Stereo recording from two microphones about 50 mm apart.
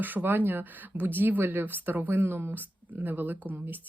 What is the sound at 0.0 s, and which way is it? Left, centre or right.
Speech, right.